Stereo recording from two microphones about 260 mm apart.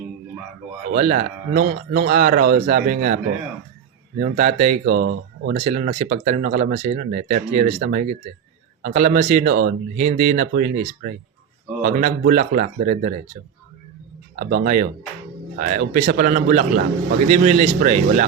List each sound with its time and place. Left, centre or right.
0.9 s speech: right
4.2 s speech: right
11.8 s speech: right
14.3 s speech: right